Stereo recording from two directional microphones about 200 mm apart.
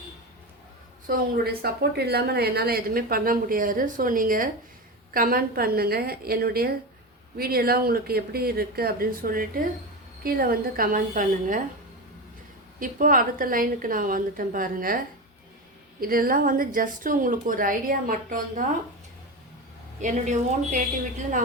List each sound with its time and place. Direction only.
1.0 s a woman's voice: 45° right (ahead or behind)
12.8 s a woman's voice: 45° right (ahead or behind)
20.0 s speech: 40° right (ahead or behind)